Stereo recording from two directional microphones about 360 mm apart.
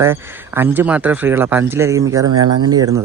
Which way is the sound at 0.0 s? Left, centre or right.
Centre.